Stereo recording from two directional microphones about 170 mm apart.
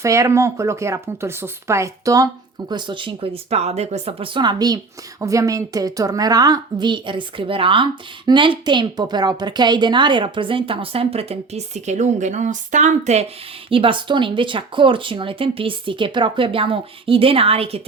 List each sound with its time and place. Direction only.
0.0 s a woman's voice: 15° right (ahead or behind); by 17.8 s 35° right (ahead or behind)